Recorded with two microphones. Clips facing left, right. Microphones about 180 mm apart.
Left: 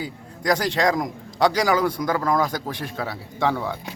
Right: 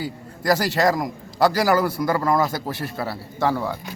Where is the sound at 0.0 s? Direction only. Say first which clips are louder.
Right 1 dB; 5° right (ahead or behind).